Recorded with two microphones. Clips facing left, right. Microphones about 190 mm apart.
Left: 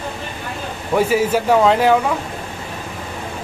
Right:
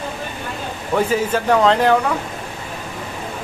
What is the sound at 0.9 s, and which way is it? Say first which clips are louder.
Speech: left 2 dB; 10° left (ahead or behind).